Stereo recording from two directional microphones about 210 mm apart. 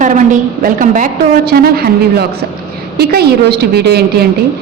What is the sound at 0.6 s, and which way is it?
A woman's voice, 40° right (ahead or behind).